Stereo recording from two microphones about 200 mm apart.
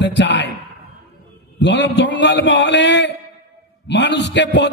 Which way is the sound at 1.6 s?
60° left (ahead or behind).